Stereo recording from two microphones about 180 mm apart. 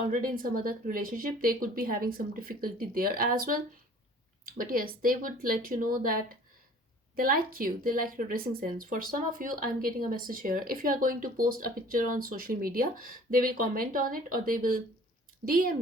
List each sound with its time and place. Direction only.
0.0 s a woman's voice: 50° right (ahead or behind)